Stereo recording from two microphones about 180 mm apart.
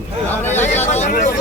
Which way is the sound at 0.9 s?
40° left (ahead or behind).